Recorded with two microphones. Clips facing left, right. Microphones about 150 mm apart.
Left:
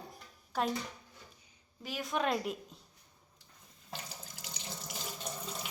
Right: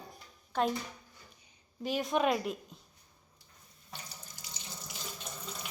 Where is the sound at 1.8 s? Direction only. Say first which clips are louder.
Right 6 dB; 25° right (ahead or behind).